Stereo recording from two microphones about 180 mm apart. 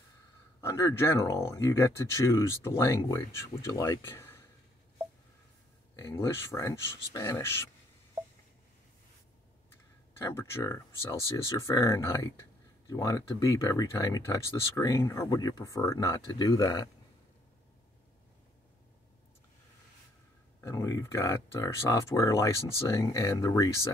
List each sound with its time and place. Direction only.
0.6 s speech: 15° left (ahead or behind)
5.9 s speech: 15° left (ahead or behind)
10.1 s speech: 15° left (ahead or behind)
20.6 s speech: 20° left (ahead or behind)